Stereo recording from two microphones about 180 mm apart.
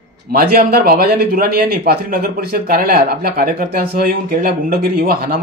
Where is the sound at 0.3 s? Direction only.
55° right (ahead or behind).